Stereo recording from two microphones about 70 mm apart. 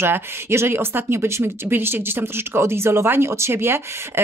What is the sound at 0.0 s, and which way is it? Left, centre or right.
Speech, right.